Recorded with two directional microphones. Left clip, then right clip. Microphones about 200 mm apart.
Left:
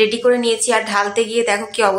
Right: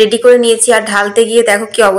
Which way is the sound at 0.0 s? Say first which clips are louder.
Right 8 dB; 20° right (ahead or behind).